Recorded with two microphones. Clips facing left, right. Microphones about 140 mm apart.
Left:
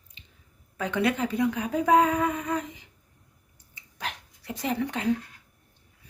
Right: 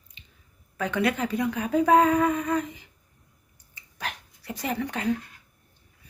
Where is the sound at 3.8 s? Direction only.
20° left (ahead or behind).